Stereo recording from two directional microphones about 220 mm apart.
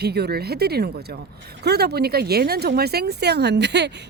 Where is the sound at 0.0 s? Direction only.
45° right (ahead or behind).